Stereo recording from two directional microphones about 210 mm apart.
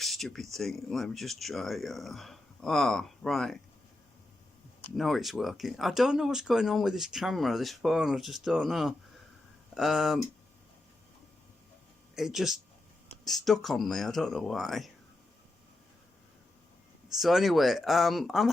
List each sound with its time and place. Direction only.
0.0 s a sound: centre (ahead or behind)
0.5 s speech: centre (ahead or behind)
4.9 s speech: centre (ahead or behind)
12.1 s speech: centre (ahead or behind)
17.1 s speech: centre (ahead or behind)